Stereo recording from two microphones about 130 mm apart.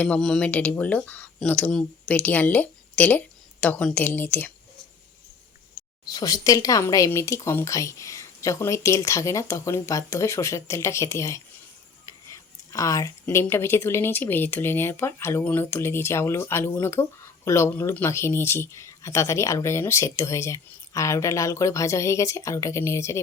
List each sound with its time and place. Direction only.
0.0 s speech: 5° left (ahead or behind)
6.1 s speech: 30° left (ahead or behind)
12.7 s speech: 25° left (ahead or behind)